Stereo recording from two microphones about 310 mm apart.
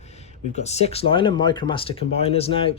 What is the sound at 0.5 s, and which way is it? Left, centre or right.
Speech, left.